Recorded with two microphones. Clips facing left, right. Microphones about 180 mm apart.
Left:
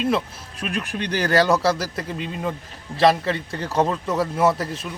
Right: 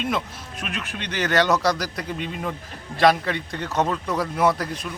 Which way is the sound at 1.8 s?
25° left (ahead or behind).